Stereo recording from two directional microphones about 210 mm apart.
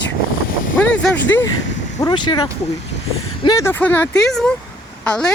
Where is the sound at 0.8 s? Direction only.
5° left (ahead or behind).